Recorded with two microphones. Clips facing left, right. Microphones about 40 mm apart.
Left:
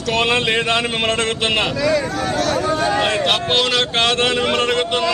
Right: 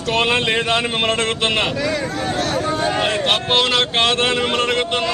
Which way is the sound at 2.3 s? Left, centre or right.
Right.